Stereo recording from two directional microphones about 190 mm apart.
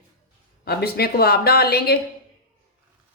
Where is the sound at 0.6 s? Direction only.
55° left (ahead or behind).